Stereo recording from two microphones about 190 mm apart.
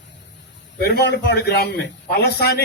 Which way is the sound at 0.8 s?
55° left (ahead or behind).